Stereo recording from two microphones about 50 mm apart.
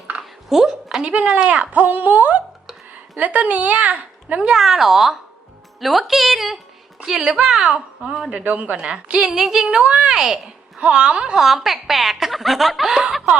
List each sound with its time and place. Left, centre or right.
0.2 s a sound: centre
1.1 s speech: right
1.8 s speech: right
4.4 s a woman's voice: centre
8.3 s a woman's voice: right
10.1 s a child's voice: centre
11.3 s a woman's voice: centre